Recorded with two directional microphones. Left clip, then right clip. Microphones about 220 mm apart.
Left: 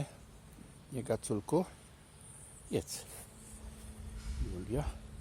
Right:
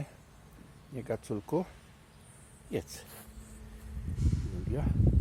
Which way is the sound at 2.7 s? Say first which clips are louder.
Even; 15° left (ahead or behind).